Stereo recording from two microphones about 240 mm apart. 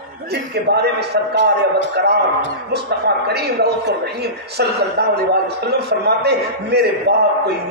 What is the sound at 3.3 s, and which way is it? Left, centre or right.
A man's voice, right.